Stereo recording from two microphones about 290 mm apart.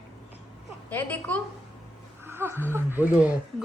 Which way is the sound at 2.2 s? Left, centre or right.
Centre.